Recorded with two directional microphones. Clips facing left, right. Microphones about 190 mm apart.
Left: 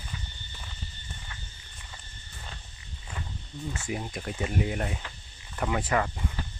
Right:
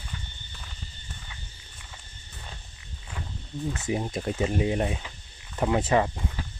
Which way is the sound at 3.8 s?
25° right (ahead or behind).